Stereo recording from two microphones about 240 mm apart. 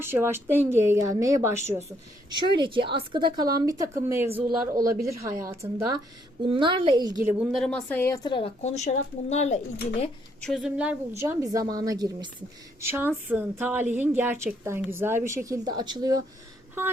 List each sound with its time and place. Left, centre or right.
0.0 s a woman's voice: centre
7.3 s a woman's voice: centre; by 9.6 s left
10.4 s a woman's voice: centre